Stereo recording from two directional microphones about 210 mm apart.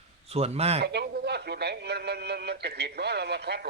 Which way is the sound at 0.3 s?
30° right (ahead or behind).